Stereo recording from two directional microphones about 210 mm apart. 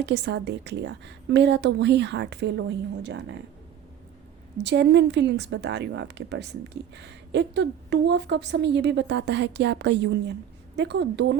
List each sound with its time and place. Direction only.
0.0 s a woman's voice: 55° right (ahead or behind)
4.5 s a woman's voice: 55° right (ahead or behind)